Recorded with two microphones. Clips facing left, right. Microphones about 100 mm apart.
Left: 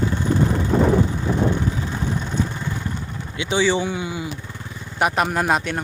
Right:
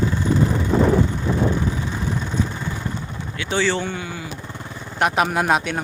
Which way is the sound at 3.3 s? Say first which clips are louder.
Left 2 dB; 15° left (ahead or behind).